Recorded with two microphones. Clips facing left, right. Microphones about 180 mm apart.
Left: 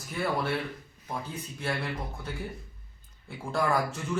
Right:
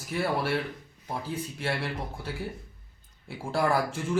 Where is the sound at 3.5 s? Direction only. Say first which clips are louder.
Right 1 dB; 30° right (ahead or behind).